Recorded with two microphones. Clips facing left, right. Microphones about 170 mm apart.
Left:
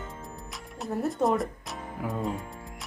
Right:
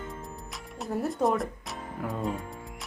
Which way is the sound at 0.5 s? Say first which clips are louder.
Even; centre (ahead or behind).